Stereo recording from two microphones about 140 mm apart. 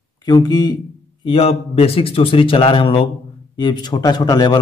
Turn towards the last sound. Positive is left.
turn(degrees=30)  # may be behind; listen again after turning